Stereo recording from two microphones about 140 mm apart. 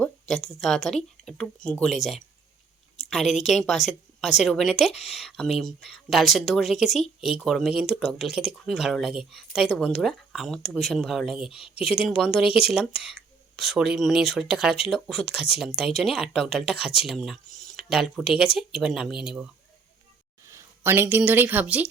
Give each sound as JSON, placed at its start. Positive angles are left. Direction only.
{"t": 0.4, "sound": "speech", "side_deg": 0}
{"t": 3.1, "sound": "a woman's voice", "side_deg": 0}
{"t": 11.7, "sound": "speech", "side_deg": 45}
{"t": 11.9, "sound": "speech", "side_deg": 0}
{"t": 20.5, "sound": "speech", "side_deg": -20}